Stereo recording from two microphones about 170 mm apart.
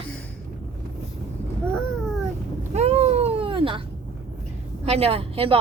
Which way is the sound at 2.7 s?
40° right (ahead or behind).